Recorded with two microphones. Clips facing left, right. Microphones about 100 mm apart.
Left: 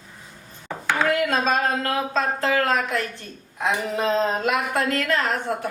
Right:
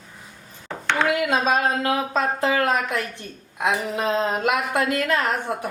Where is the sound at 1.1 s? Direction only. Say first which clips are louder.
Right 1 dB; 10° right (ahead or behind).